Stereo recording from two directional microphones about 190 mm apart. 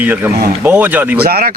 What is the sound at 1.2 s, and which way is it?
Speech, 50° right (ahead or behind).